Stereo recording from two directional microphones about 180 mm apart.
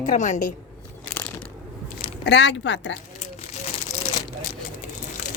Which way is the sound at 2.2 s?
75° left (ahead or behind).